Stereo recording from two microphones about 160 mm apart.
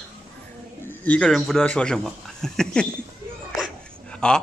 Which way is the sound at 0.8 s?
10° left (ahead or behind).